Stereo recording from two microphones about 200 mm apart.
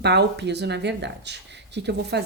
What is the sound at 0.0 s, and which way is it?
Speech, 60° right (ahead or behind).